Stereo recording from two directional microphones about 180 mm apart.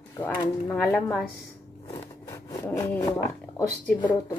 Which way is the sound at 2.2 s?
15° left (ahead or behind).